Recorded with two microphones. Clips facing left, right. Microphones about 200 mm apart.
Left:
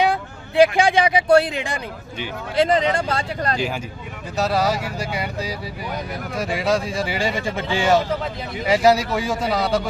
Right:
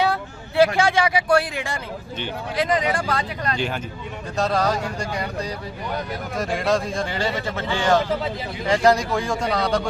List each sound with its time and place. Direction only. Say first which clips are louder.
0.0 s speech: left 2 dB; 15° left (ahead or behind)
2.6 s speech: left 4 dB; 30° left (ahead or behind)
4.4 s speech: left 1 dB; 5° left (ahead or behind)